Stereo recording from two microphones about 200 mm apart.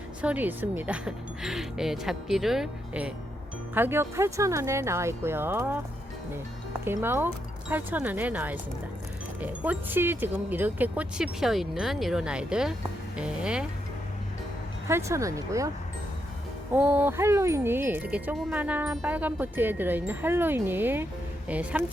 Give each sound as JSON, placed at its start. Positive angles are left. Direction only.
{"t": 0.2, "sound": "speech", "side_deg": -5}
{"t": 6.8, "sound": "speech", "side_deg": -10}
{"t": 14.8, "sound": "speech", "side_deg": -15}
{"t": 16.7, "sound": "speech", "side_deg": -10}